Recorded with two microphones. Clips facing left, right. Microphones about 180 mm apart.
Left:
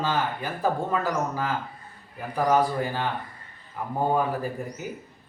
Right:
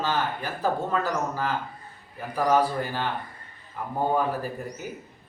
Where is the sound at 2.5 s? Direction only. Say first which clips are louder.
Even; 15° left (ahead or behind).